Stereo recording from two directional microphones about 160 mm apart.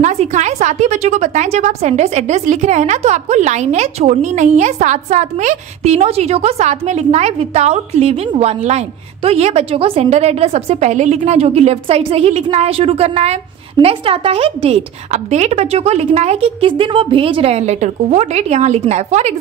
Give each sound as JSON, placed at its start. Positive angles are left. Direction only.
{"t": 0.0, "sound": "a woman's voice", "side_deg": -45}